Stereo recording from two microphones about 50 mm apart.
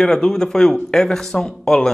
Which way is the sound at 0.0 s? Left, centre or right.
Centre.